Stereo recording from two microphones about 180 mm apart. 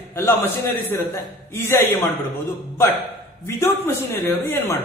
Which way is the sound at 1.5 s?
15° left (ahead or behind).